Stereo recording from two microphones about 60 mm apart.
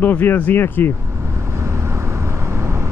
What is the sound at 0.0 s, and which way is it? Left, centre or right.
Speech, left.